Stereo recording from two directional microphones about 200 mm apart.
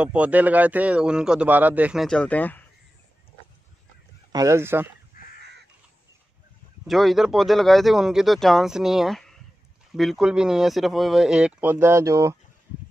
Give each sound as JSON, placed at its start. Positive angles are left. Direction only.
{"t": 0.0, "sound": "speech", "side_deg": -5}
{"t": 4.3, "sound": "speech", "side_deg": -15}
{"t": 5.1, "sound": "crow", "side_deg": 45}
{"t": 6.9, "sound": "speech", "side_deg": 0}